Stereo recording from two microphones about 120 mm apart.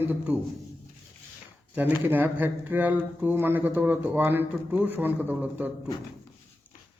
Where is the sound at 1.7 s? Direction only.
15° right (ahead or behind).